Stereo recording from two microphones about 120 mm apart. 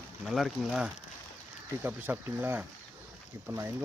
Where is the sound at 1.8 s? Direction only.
15° right (ahead or behind).